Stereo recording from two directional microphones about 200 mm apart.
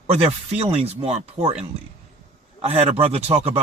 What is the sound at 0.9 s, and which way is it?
Speech, 30° right (ahead or behind).